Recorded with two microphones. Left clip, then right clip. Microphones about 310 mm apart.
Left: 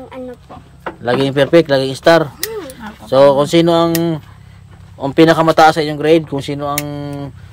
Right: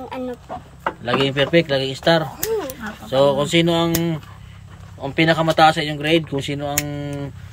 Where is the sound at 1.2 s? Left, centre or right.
Centre.